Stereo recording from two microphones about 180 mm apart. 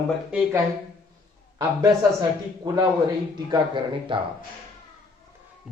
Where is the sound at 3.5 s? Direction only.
25° right (ahead or behind).